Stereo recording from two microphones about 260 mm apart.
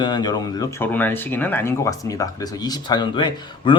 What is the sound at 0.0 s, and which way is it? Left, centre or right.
Speech, centre.